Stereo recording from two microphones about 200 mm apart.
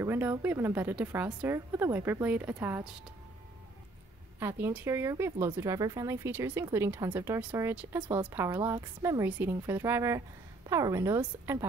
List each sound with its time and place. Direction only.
0.0 s speech: 15° right (ahead or behind)
4.4 s speech: 10° right (ahead or behind)